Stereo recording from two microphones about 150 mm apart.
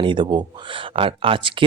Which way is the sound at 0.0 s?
30° right (ahead or behind).